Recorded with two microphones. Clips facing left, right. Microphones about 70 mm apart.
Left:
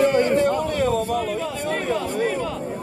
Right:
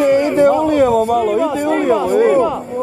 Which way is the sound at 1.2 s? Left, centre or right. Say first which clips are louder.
Right 10 dB; right.